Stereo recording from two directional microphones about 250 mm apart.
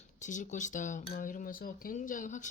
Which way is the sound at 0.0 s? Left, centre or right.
Left.